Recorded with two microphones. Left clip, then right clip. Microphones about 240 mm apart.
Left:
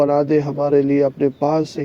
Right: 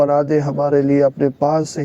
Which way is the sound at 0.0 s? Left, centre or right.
Right.